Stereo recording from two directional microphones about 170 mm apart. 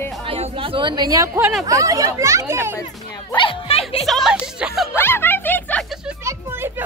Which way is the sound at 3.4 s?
35° left (ahead or behind).